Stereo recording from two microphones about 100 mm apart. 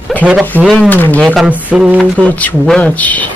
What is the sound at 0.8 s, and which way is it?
Speech, 20° left (ahead or behind).